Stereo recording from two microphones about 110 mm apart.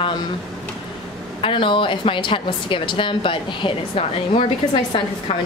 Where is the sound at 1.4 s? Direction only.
50° left (ahead or behind).